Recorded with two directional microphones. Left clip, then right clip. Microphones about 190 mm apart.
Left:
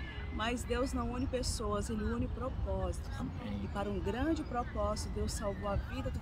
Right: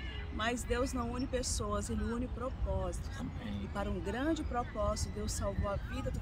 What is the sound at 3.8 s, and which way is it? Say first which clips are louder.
Speech: left 1 dB; 25° right (ahead or behind).